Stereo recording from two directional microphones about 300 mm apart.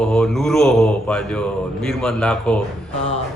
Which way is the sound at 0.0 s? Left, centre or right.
Centre.